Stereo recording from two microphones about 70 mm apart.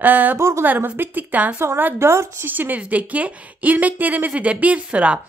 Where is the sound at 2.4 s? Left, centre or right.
Right.